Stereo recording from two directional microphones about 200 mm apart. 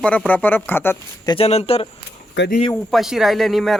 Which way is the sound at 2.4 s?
65° left (ahead or behind).